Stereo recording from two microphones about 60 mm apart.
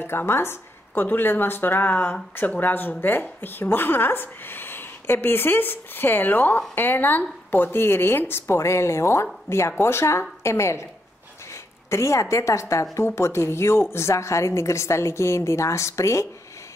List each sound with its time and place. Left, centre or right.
0.0 s speech: left
12.9 s speech: left